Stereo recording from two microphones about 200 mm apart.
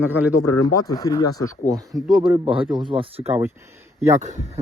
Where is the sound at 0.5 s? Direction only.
20° left (ahead or behind).